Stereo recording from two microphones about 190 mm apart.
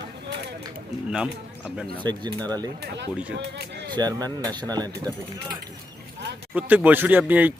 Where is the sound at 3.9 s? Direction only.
20° right (ahead or behind).